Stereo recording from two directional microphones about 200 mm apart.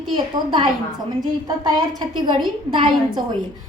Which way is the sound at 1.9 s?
20° right (ahead or behind).